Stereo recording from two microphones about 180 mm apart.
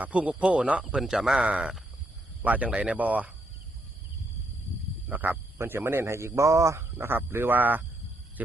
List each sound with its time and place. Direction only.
0.0 s speech: 5° right (ahead or behind)
5.0 s speech: 10° right (ahead or behind)